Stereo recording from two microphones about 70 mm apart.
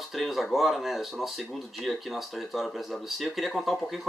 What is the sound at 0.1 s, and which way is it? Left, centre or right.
Speech, centre.